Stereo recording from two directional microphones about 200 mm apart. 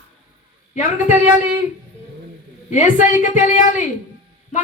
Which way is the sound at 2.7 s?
40° left (ahead or behind).